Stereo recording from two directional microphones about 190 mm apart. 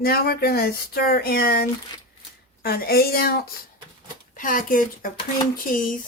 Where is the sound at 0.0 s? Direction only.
50° left (ahead or behind).